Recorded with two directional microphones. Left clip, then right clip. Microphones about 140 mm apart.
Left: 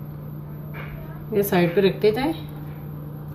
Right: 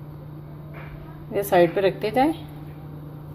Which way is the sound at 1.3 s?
65° right (ahead or behind).